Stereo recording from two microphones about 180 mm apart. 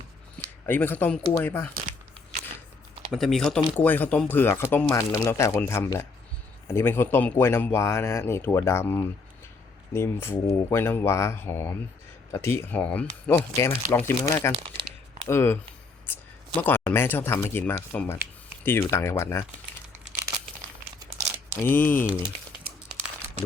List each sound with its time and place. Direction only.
0.6 s speech: 10° left (ahead or behind)
3.1 s speech: centre (ahead or behind)
14.5 s speech: 30° right (ahead or behind)
15.3 s speech: 15° left (ahead or behind)
16.6 s speech: 10° left (ahead or behind)
21.5 s speech: 10° left (ahead or behind)